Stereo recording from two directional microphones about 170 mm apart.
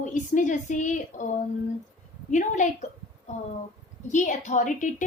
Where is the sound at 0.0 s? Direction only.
45° left (ahead or behind).